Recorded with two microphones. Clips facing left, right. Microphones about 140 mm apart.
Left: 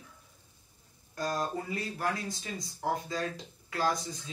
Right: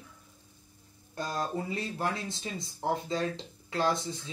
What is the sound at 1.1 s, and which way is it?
Speech, 25° right (ahead or behind).